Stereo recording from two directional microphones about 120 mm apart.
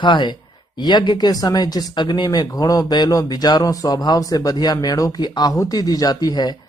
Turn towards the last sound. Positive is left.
turn(degrees=35)  # may be behind; listen again after turning